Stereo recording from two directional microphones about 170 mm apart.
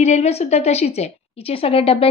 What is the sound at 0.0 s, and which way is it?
A woman's voice, 40° left (ahead or behind).